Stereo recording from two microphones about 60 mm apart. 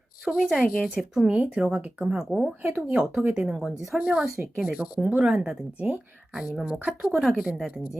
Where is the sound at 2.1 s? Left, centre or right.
Centre.